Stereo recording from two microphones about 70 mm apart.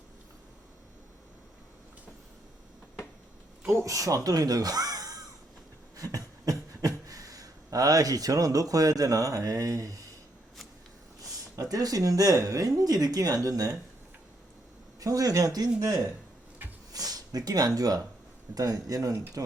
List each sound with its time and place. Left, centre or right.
3.7 s speech: right
6.0 s a sound: right
11.7 s speech: right
15.0 s speech: right